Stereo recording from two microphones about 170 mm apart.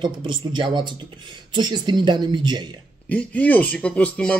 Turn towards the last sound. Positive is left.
turn(degrees=10)  # may be behind; listen again after turning